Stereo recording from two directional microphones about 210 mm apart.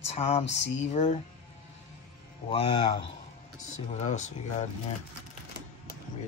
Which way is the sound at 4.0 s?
35° left (ahead or behind).